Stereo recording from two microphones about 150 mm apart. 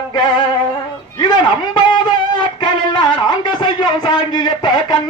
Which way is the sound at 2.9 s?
30° left (ahead or behind).